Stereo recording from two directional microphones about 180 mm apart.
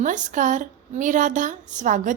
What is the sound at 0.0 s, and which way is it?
A woman's voice, 45° right (ahead or behind).